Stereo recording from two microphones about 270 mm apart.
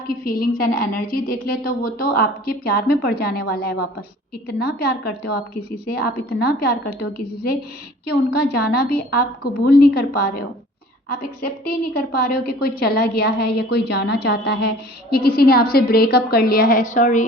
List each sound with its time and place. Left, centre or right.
0.1 s a woman's voice: left
11.4 s a woman's voice: left